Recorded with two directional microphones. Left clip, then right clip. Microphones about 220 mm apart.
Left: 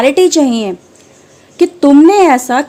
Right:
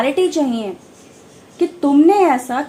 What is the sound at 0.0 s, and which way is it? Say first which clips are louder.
Speech: left 8 dB; 50° left (ahead or behind).